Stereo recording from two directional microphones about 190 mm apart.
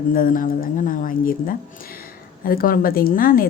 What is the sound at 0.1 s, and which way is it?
Speech, 45° left (ahead or behind).